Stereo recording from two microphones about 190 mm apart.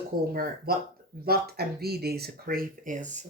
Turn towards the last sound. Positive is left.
turn(degrees=-40)  # may be behind; listen again after turning